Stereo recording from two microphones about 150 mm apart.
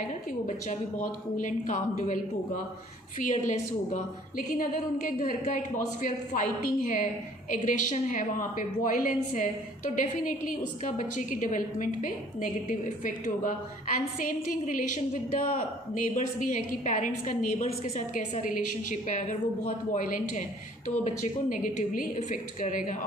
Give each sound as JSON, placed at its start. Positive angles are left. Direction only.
{"t": 0.4, "sound": "a woman's voice", "side_deg": 55}
{"t": 3.2, "sound": "a woman's voice", "side_deg": 60}